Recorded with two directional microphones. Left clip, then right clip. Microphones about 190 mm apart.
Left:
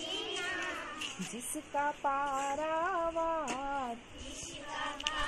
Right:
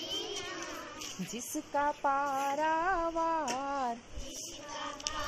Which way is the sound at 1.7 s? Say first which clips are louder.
Right 2 dB; 50° right (ahead or behind).